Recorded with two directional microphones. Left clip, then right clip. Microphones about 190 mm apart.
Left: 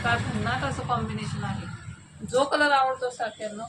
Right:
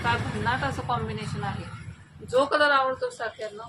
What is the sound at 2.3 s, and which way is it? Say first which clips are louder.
Speech: right 1 dB; 15° right (ahead or behind).